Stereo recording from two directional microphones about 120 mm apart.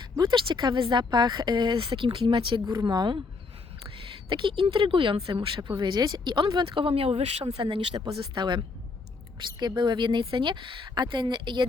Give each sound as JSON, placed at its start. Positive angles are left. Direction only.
{"t": 0.0, "sound": "speech", "side_deg": -40}
{"t": 7.5, "sound": "speech", "side_deg": -45}